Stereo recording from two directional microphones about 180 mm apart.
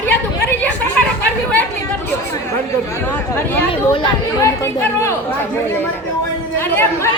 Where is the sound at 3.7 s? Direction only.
30° left (ahead or behind).